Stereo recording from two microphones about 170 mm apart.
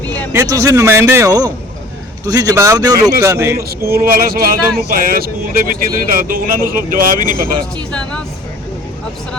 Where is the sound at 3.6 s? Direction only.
65° right (ahead or behind).